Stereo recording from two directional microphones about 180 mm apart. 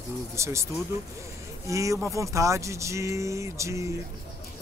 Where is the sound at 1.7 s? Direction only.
15° right (ahead or behind).